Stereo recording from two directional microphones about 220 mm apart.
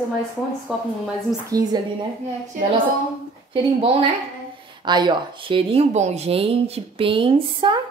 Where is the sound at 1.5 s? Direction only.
15° right (ahead or behind).